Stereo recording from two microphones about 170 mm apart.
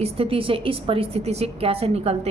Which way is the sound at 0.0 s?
35° right (ahead or behind).